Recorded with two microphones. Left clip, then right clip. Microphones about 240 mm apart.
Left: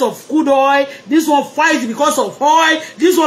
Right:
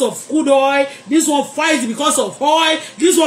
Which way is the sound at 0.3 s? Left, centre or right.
Centre.